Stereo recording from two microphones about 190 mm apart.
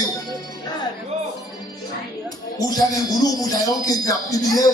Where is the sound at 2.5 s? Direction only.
20° left (ahead or behind).